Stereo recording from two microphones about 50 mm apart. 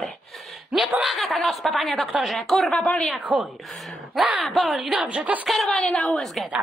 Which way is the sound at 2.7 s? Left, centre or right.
Centre.